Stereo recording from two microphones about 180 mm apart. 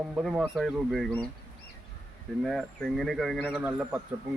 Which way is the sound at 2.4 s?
Centre (ahead or behind).